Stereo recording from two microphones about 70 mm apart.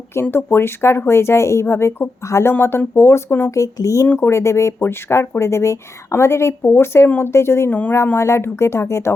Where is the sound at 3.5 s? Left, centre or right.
Left.